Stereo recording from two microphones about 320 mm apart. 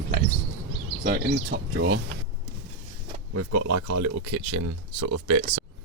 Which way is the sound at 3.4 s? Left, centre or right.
Right.